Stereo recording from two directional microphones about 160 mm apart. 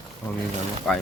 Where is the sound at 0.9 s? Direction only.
5° left (ahead or behind).